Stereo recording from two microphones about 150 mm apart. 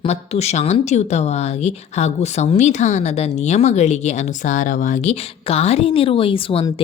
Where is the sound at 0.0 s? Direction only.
45° left (ahead or behind).